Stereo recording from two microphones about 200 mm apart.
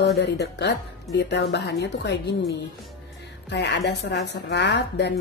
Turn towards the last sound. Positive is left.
turn(degrees=60)  # may be behind; listen again after turning